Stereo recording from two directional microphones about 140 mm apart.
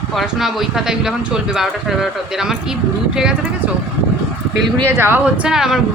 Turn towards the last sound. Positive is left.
turn(degrees=-5)  # may be behind; listen again after turning